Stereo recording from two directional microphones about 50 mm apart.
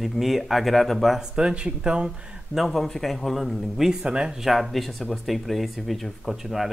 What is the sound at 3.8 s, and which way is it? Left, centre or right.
Speech, centre.